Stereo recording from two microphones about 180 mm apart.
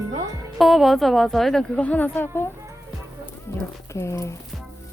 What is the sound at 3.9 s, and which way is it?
Speech, 15° left (ahead or behind).